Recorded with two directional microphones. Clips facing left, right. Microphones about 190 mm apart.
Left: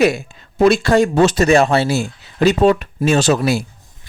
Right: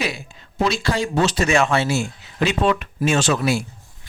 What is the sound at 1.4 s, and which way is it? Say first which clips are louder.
Speech: left 5 dB; 35° left (ahead or behind).